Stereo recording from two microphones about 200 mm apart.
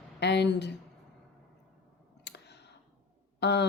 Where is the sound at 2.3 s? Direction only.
55° left (ahead or behind).